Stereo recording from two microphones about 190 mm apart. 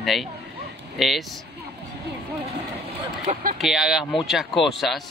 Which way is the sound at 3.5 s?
Centre (ahead or behind).